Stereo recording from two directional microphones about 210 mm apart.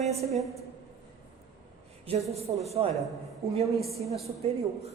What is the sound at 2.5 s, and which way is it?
Speech, 20° right (ahead or behind).